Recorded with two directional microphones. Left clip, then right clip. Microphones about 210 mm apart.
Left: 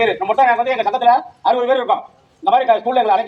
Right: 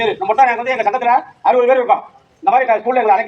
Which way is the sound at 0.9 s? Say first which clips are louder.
Left 1 dB; 20° left (ahead or behind).